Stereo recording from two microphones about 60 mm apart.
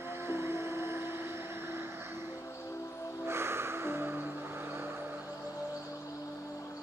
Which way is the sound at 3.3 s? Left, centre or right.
Right.